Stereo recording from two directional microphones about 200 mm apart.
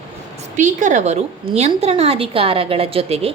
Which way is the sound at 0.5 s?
40° right (ahead or behind).